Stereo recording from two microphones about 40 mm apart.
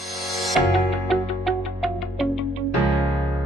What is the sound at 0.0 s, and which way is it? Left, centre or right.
Music, centre.